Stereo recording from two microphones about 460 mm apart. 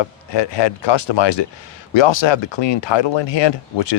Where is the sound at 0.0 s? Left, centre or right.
Left.